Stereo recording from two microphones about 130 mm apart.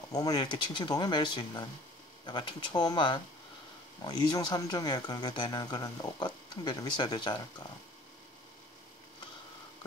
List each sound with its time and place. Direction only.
0.1 s speech: 30° left (ahead or behind)